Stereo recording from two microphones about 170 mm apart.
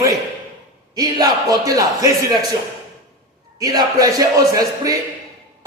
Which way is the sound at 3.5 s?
20° right (ahead or behind).